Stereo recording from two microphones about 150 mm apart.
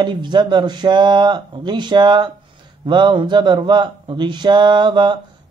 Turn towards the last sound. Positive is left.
turn(degrees=-30)  # may be behind; listen again after turning